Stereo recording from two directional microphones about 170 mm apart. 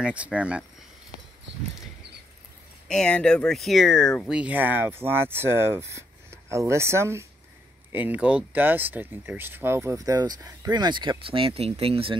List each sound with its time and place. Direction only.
0.0 s speech: 5° right (ahead or behind)
2.9 s speech: 5° left (ahead or behind); by 12.2 s 35° right (ahead or behind)